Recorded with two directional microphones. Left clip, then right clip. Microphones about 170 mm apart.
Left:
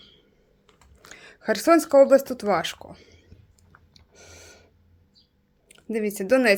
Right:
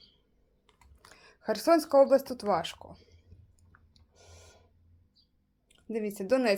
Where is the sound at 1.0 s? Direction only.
15° left (ahead or behind).